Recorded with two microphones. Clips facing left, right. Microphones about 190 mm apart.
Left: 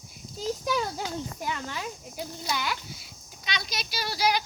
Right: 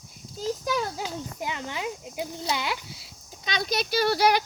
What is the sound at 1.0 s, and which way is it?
A child's voice, 20° right (ahead or behind).